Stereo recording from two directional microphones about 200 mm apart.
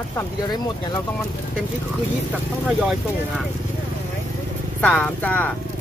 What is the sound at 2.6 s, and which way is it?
Speech, 5° right (ahead or behind).